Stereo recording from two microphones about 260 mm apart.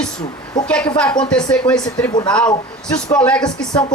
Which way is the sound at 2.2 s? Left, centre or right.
Centre.